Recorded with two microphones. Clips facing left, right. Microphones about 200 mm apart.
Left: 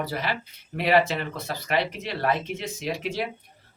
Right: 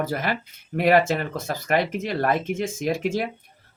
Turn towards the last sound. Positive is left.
turn(degrees=-50)  # may be behind; listen again after turning